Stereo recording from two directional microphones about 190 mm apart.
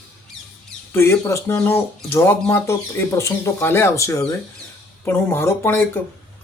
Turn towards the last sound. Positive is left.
turn(degrees=10)  # may be behind; listen again after turning